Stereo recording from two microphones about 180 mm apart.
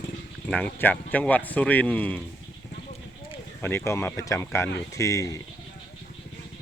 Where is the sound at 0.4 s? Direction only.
10° left (ahead or behind).